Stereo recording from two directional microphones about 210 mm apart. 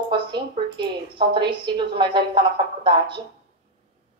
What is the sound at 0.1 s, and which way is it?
A woman's voice, 20° right (ahead or behind).